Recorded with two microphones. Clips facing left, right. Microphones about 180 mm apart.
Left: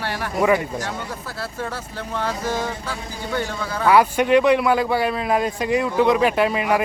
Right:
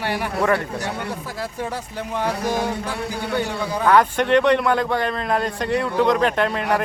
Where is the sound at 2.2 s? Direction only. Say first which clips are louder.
Right 2 dB; 15° right (ahead or behind).